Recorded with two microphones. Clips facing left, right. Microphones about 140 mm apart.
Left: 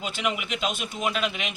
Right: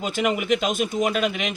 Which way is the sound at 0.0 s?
45° right (ahead or behind).